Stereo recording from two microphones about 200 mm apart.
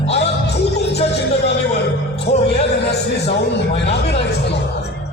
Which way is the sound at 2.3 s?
55° left (ahead or behind).